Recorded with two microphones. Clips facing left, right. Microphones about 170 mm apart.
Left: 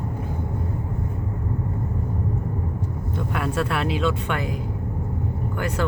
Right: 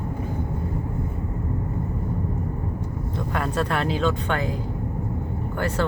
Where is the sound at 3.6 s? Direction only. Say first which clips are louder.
Even; 40° right (ahead or behind).